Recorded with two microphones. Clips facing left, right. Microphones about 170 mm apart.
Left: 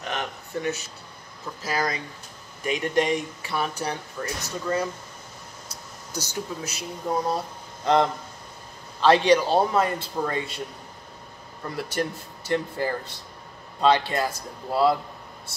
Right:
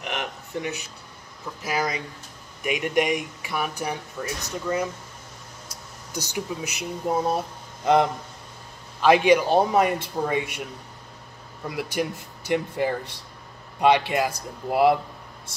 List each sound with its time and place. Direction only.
0.0 s a sound: 15° right (ahead or behind)
1.6 s speech: 15° right (ahead or behind)
6.1 s speech: 15° right (ahead or behind)
11.7 s speech: 10° right (ahead or behind)